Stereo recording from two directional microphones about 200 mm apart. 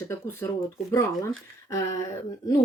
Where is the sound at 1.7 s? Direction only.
15° left (ahead or behind).